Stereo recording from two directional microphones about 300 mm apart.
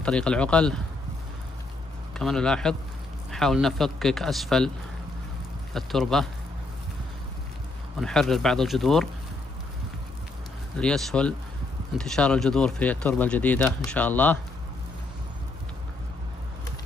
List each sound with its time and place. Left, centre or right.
0.0 s speech: centre
2.1 s speech: centre
5.7 s speech: centre
8.0 s speech: centre
10.8 s speech: centre